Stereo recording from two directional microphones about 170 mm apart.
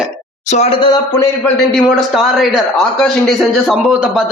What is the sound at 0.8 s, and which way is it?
Speech, 20° left (ahead or behind).